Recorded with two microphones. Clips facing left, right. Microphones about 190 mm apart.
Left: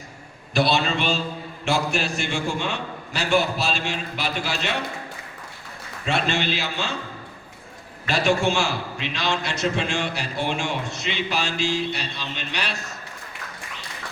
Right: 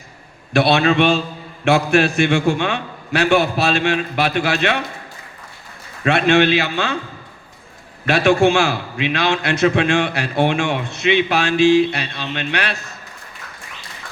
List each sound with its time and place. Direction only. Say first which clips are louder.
0.5 s a man's voice: right 7 dB; 60° right (ahead or behind)
6.1 s a man's voice: right 10 dB; 65° right (ahead or behind)
8.0 s a man's voice: right 7 dB; 60° right (ahead or behind)